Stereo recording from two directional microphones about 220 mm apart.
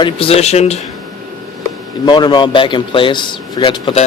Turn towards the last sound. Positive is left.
turn(degrees=25)  # may be behind; listen again after turning